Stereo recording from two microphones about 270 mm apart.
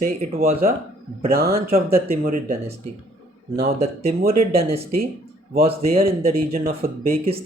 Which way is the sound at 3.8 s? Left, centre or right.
Right.